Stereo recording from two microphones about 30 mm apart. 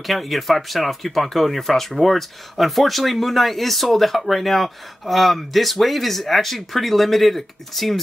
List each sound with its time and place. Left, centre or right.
0.0 s speech: centre